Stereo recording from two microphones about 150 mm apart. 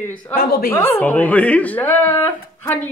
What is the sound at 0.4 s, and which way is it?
Speech, 85° left.